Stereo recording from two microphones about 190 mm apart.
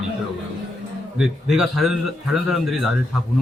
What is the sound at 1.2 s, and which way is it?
A man's voice, centre (ahead or behind).